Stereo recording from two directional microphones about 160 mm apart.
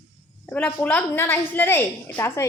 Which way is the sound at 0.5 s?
10° left (ahead or behind).